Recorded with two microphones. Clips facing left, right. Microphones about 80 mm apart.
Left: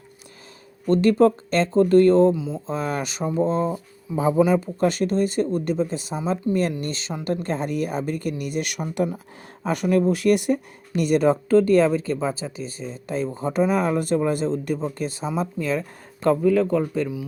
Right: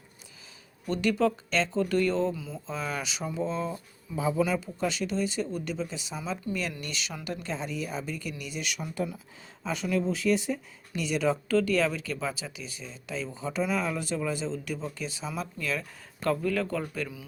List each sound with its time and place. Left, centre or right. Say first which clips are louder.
0.9 s speech: left 9 dB; left
2.3 s speech: left 11 dB; left
2.6 s speech: left 6 dB; left
7.3 s speech: left 10 dB; left
15.3 s speech: left 8 dB; left
16.4 s speech: left 10 dB; centre